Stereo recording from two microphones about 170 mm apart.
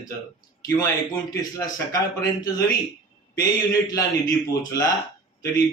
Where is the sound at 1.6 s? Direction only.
20° left (ahead or behind).